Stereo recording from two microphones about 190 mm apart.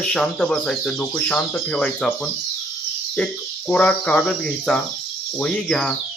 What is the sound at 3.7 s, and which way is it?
Cricket, 5° left (ahead or behind).